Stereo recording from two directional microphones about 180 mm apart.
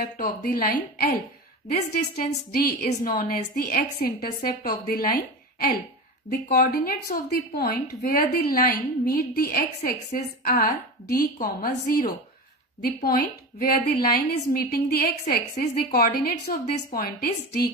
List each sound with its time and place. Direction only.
0.4 s a woman's voice: 55° left (ahead or behind)